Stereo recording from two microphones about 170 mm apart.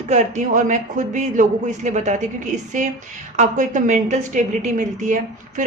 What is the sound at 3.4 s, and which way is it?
A woman's voice, 45° right (ahead or behind).